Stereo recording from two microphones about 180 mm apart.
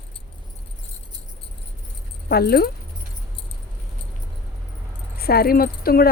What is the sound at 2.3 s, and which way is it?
Speech, 60° left (ahead or behind).